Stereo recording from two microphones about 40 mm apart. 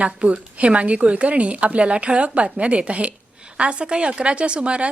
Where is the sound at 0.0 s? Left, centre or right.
Right.